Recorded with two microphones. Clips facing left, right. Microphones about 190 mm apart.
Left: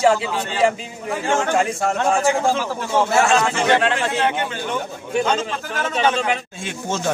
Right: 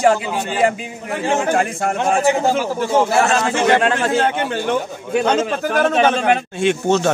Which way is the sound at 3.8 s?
40° right (ahead or behind).